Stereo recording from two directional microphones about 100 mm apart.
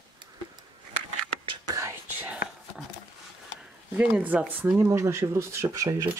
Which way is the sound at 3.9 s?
15° right (ahead or behind).